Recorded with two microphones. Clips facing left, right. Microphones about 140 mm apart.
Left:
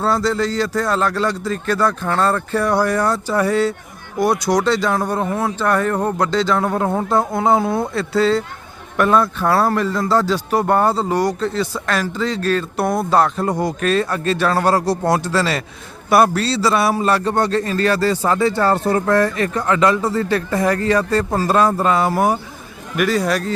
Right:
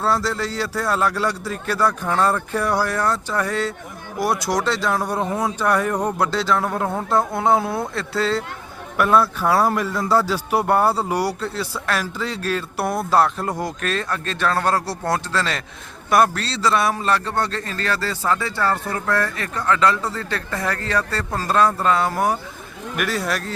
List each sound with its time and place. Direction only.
0.0 s a man's voice: 5° right (ahead or behind); by 18.5 s 25° left (ahead or behind)
18.5 s speech: 35° left (ahead or behind)
19.4 s speech: 20° left (ahead or behind)
23.0 s a man's voice: centre (ahead or behind)